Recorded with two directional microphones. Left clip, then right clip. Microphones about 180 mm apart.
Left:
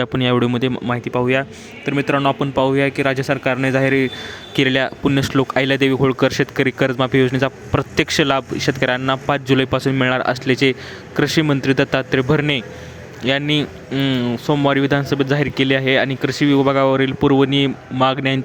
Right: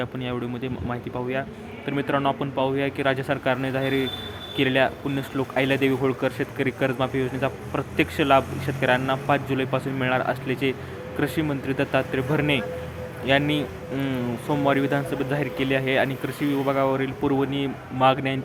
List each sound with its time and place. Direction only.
0.0 s speech: 45° left (ahead or behind)